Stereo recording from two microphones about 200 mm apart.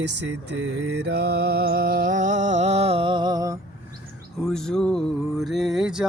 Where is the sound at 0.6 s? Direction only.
60° right (ahead or behind); by 3.6 s 20° right (ahead or behind).